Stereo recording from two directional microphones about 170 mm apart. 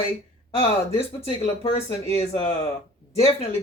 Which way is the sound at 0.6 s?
35° left (ahead or behind).